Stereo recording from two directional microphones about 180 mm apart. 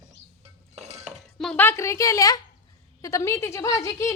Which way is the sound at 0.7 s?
35° right (ahead or behind).